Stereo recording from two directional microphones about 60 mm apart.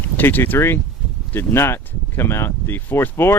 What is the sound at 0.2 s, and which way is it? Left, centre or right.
Speech, left.